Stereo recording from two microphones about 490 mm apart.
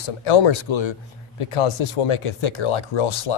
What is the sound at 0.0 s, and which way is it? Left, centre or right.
Speech, left.